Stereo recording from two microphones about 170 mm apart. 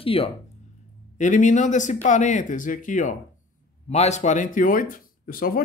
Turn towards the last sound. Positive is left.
turn(degrees=55)  # may be behind; listen again after turning